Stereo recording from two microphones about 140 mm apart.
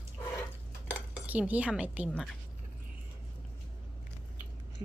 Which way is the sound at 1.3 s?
10° right (ahead or behind).